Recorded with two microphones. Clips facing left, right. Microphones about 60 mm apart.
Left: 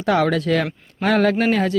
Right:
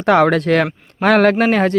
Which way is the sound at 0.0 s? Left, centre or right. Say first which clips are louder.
Right 5 dB; right.